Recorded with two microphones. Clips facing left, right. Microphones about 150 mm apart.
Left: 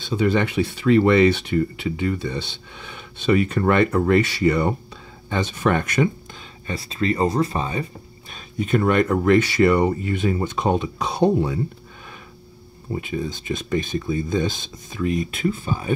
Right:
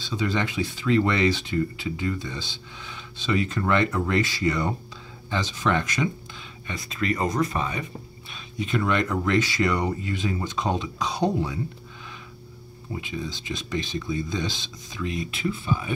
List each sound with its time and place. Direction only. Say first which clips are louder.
0.0 s speech: left 6 dB; 55° left (ahead or behind)
6.7 s speech: left 4 dB; 30° left (ahead or behind)
8.5 s speech: left 6 dB; 50° left (ahead or behind)
13.0 s speech: left 6 dB; 50° left (ahead or behind)